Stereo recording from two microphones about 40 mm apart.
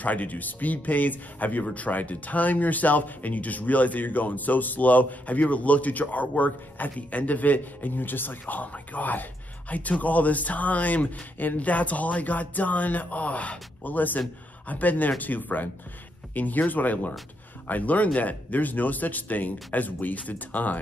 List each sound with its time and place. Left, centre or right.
0.0 s speech: left